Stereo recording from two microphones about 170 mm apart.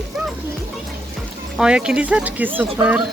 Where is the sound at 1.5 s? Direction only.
5° right (ahead or behind).